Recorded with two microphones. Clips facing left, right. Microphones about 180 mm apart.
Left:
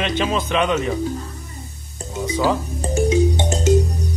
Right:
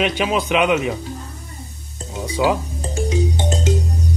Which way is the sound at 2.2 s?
10° right (ahead or behind).